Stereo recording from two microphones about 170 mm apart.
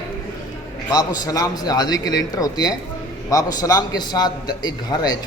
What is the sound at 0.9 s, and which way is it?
A man's voice, 20° left (ahead or behind).